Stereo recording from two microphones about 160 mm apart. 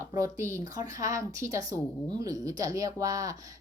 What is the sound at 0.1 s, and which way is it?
A woman's voice, 20° right (ahead or behind).